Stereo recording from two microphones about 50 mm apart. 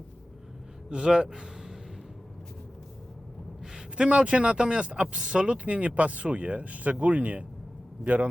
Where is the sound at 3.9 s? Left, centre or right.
Right.